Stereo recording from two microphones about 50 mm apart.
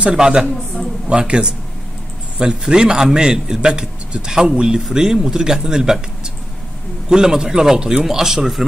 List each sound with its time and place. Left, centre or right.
0.0 s a man's voice: centre